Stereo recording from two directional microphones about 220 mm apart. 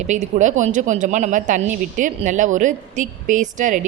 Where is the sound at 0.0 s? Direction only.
30° right (ahead or behind).